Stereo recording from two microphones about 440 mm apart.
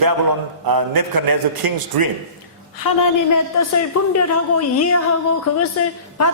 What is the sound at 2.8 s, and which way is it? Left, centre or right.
A woman's voice, left.